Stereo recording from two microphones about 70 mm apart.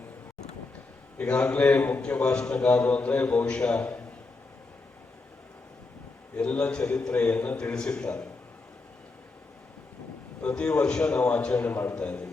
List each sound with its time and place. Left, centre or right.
1.2 s a man's voice: centre
6.3 s a man's voice: centre
10.4 s a man's voice: centre